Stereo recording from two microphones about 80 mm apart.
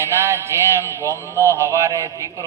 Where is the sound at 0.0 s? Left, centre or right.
Right.